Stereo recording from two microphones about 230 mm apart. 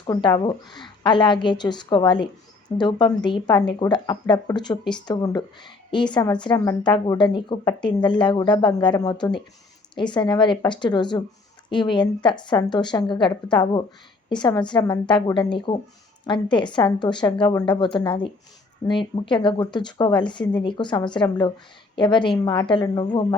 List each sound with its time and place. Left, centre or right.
0.0 s a woman's voice: centre